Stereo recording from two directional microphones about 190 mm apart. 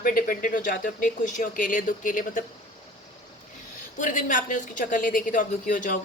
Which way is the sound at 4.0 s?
40° left (ahead or behind).